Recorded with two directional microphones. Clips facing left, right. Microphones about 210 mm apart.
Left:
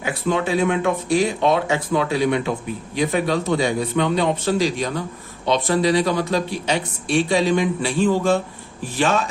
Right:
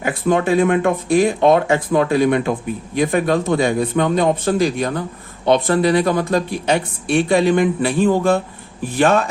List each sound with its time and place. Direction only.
0.0 s speech: 50° right (ahead or behind)